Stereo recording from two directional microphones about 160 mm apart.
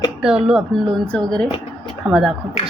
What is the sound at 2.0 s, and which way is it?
Speech, 5° right (ahead or behind).